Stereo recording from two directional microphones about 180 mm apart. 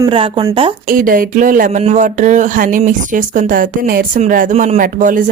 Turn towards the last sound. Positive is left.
turn(degrees=-50)  # may be behind; listen again after turning